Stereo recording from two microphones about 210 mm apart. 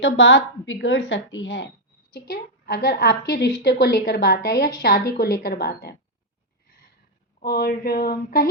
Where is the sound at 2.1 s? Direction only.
50° left (ahead or behind).